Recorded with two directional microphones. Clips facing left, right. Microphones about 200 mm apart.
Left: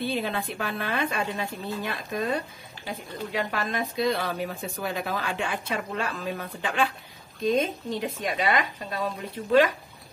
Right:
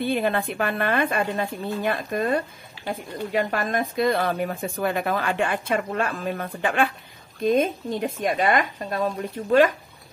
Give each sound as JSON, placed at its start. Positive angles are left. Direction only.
{"t": 0.0, "sound": "a woman's voice", "side_deg": -55}